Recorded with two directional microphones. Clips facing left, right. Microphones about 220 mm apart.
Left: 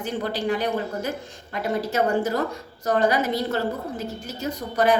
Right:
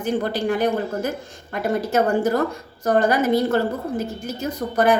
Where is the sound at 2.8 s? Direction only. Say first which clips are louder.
Right 3 dB; 50° right (ahead or behind).